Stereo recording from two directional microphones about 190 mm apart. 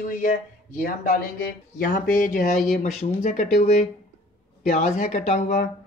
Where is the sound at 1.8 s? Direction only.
45° left (ahead or behind).